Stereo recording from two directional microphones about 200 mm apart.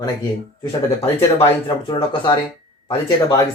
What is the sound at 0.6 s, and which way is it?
Speech, 15° left (ahead or behind).